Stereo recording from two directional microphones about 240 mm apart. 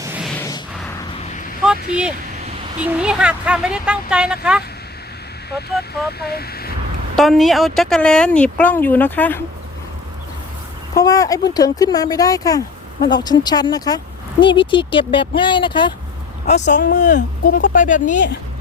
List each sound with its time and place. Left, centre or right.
0.0 s a sound: centre
0.3 s a sound: centre
1.6 s speech: centre
5.5 s speech: left
7.2 s speech: centre
10.9 s speech: centre
16.6 s speech: left
17.0 s speech: left